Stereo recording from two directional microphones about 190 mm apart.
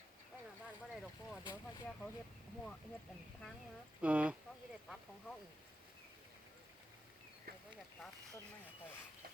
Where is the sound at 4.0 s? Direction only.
5° right (ahead or behind).